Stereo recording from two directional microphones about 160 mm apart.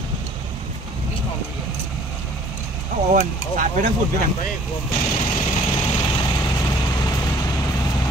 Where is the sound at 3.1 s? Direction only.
55° right (ahead or behind).